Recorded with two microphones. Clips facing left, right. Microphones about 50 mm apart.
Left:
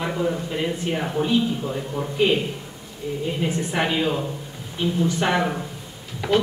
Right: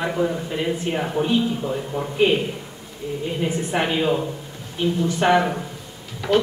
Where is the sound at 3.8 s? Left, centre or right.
Centre.